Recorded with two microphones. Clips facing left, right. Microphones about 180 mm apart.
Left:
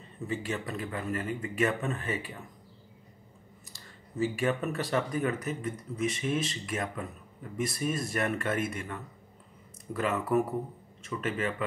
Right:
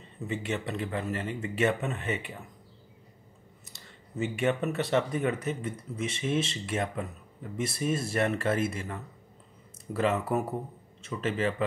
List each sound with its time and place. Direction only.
0.3 s speech: 25° right (ahead or behind)
3.7 s speech: 25° right (ahead or behind)